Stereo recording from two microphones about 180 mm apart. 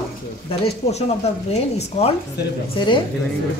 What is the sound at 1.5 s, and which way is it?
A man's voice, 35° left (ahead or behind).